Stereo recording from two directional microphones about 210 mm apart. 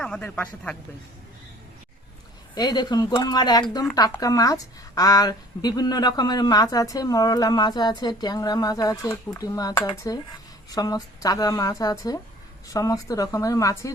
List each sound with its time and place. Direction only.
0.0 s speech: 5° left (ahead or behind)
2.6 s speech: 20° left (ahead or behind)